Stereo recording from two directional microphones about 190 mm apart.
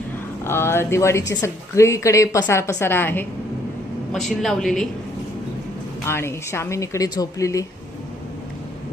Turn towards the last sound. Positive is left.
turn(degrees=15)  # may be behind; listen again after turning